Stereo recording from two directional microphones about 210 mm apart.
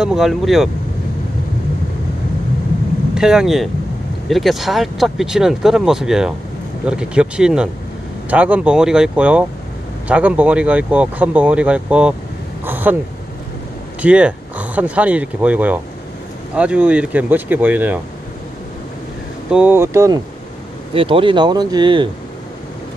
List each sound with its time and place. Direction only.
0.0 s speech: centre (ahead or behind)
3.2 s speech: 5° right (ahead or behind)
12.6 s a sound: 10° right (ahead or behind)
14.0 s speech: 5° right (ahead or behind)
19.5 s speech: 10° right (ahead or behind)
20.9 s speech: 25° right (ahead or behind)